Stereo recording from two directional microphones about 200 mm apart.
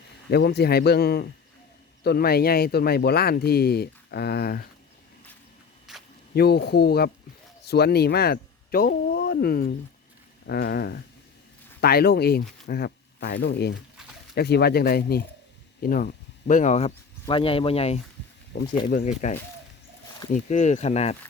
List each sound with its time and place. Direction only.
0.3 s speech: 55° left (ahead or behind)
5.9 s a sound: centre (ahead or behind)
6.3 s speech: 55° left (ahead or behind); by 18.0 s 30° left (ahead or behind)
18.5 s speech: 60° left (ahead or behind)
19.0 s speech: 35° left (ahead or behind)